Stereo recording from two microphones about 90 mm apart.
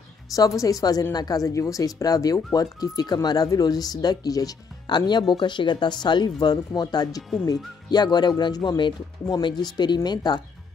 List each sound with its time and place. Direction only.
0.3 s a woman's voice: 40° left (ahead or behind)